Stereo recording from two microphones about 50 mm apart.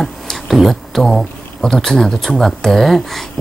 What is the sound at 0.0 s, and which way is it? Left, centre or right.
Speech, centre.